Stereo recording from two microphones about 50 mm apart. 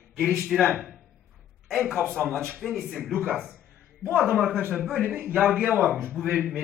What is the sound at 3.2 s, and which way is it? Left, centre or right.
A man's voice, right.